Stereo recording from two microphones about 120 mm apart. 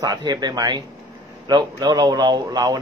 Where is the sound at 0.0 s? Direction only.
35° right (ahead or behind).